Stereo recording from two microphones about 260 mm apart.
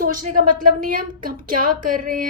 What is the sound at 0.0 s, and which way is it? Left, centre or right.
Speech, right.